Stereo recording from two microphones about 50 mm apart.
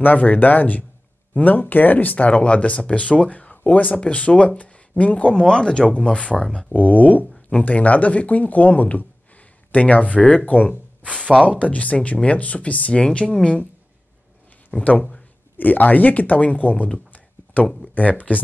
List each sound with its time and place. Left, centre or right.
0.0 s speech: left
5.3 s speech: centre
6.7 s speech: left; by 13.6 s centre
14.8 s speech: left